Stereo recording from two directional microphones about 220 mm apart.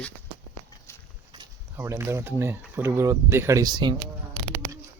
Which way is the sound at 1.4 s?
10° right (ahead or behind).